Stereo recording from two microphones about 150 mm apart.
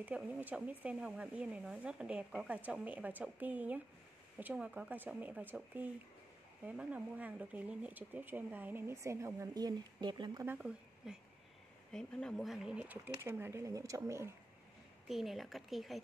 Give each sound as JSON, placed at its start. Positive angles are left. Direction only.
{"t": 0.0, "sound": "speech", "side_deg": -10}
{"t": 10.4, "sound": "speech", "side_deg": -10}
{"t": 11.9, "sound": "speech", "side_deg": 5}
{"t": 15.0, "sound": "speech", "side_deg": 0}